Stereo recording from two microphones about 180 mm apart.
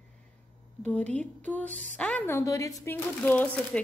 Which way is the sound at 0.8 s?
5° left (ahead or behind).